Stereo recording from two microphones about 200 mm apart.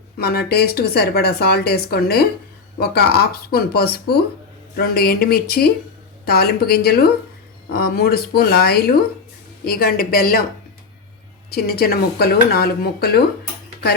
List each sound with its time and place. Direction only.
0.2 s speech: 50° left (ahead or behind)
11.5 s speech: 50° left (ahead or behind)